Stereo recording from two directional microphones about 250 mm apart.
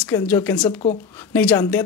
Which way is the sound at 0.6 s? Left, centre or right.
Left.